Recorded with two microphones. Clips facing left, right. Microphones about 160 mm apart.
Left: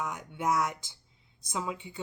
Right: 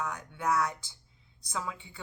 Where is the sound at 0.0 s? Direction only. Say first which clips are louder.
Left 1 dB; 20° left (ahead or behind).